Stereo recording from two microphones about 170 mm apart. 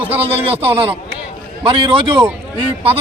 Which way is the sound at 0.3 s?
35° right (ahead or behind).